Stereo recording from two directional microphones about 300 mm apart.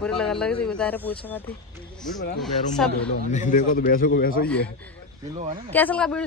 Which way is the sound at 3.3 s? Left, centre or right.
Left.